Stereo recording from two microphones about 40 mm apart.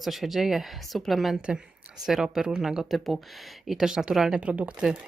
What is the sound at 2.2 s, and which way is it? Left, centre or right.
A woman's voice, centre.